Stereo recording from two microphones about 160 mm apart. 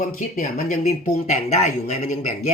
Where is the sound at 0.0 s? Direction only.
55° left (ahead or behind).